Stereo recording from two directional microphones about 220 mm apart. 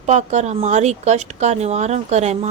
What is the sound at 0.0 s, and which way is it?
A woman's voice, 30° right (ahead or behind).